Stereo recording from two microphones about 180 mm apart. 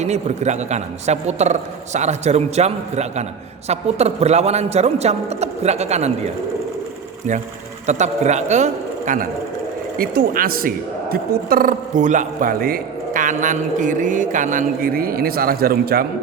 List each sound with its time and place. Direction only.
0.0 s a man's voice: 40° right (ahead or behind)
7.9 s a man's voice: 40° right (ahead or behind); by 16.0 s 55° right (ahead or behind)